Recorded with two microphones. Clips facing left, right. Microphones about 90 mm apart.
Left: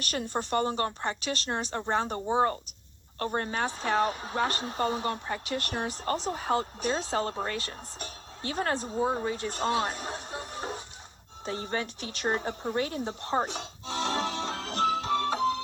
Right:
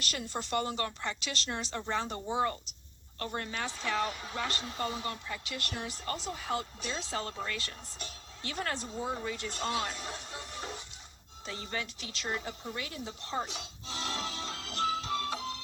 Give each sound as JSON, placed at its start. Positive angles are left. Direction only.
{"t": 0.0, "sound": "speech", "side_deg": 45}
{"t": 1.0, "sound": "speech", "side_deg": 45}
{"t": 2.3, "sound": "speech", "side_deg": 35}
{"t": 11.4, "sound": "a sound", "side_deg": 35}